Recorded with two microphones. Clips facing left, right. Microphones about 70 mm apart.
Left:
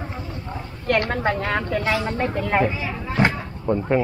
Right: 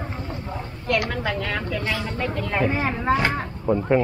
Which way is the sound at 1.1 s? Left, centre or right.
Left.